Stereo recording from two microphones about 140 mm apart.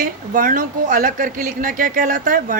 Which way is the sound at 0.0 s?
75° right (ahead or behind).